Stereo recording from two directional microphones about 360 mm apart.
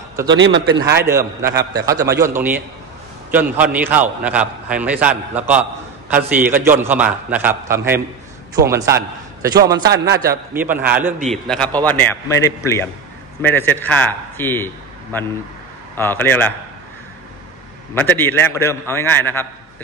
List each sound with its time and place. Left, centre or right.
0.2 s a man's voice: right
0.7 s a man's voice: centre
9.8 s a man's voice: right
10.1 s a man's voice: centre
17.9 s a man's voice: centre